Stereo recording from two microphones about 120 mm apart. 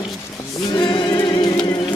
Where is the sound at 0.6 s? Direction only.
40° left (ahead or behind).